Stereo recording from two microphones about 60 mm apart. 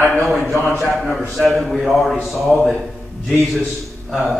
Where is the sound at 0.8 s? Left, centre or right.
Centre.